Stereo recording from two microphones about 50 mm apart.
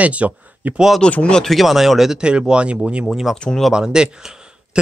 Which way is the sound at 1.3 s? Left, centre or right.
Centre.